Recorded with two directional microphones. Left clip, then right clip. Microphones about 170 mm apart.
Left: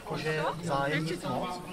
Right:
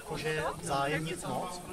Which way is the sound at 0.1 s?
25° right (ahead or behind).